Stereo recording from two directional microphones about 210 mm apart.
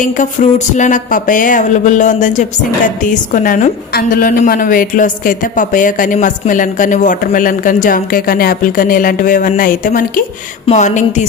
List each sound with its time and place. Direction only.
0.0 s speech: 40° left (ahead or behind)